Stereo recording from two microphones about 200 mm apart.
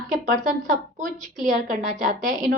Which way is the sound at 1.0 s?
40° right (ahead or behind).